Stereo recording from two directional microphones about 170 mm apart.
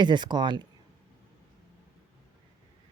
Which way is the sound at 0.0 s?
25° right (ahead or behind).